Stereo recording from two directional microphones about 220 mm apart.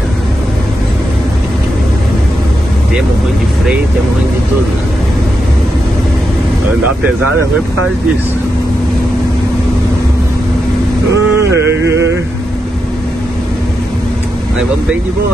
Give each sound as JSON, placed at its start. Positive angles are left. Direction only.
{"t": 11.5, "sound": "music", "side_deg": -55}